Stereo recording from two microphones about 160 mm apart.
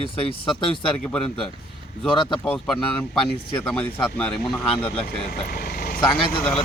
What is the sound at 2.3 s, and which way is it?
Speech, 5° left (ahead or behind).